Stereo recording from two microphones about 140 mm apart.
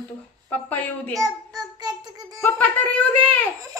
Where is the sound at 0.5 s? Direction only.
10° left (ahead or behind).